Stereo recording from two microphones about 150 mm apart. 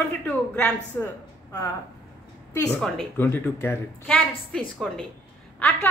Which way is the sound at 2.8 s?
5° left (ahead or behind).